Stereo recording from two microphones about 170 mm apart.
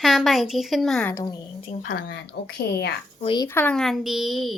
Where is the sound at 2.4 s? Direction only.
75° left (ahead or behind).